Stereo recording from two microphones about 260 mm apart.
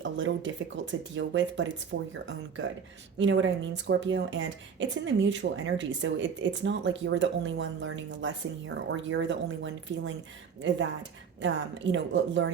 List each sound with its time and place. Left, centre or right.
0.0 s speech: right
11.3 s speech: right